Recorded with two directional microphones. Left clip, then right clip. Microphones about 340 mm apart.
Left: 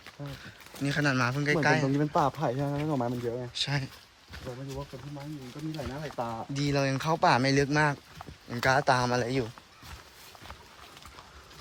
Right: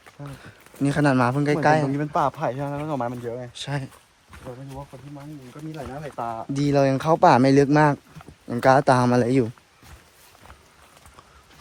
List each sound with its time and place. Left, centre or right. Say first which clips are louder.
0.4 s speech: right 9 dB; centre
2.0 s speech: right 4 dB; right
3.5 s speech: even; centre
5.7 s speech: right 4 dB; centre